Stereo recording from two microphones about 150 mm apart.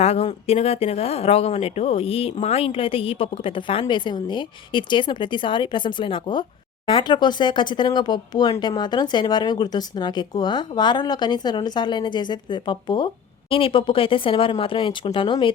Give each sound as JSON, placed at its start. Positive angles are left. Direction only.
{"t": 0.0, "sound": "speech", "side_deg": 40}